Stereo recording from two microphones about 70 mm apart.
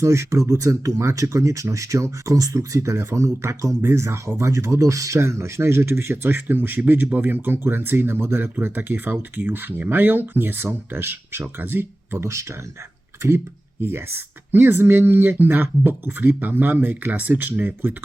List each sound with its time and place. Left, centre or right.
0.0 s speech: right
13.8 s speech: right